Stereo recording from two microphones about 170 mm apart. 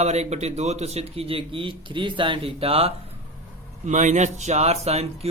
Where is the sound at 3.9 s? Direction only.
45° right (ahead or behind).